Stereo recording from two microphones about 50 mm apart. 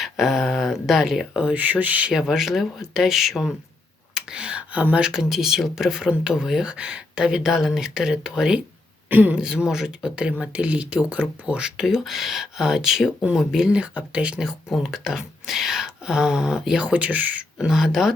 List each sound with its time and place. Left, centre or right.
0.0 s speech: centre
1.4 s speech: right
2.1 s speech: centre
4.1 s speech: centre
9.0 s a man's voice: right
9.3 s speech: centre
10.4 s speech: right; by 13.7 s centre
13.7 s speech: right
14.7 s speech: centre
16.8 s speech: right
17.6 s speech: centre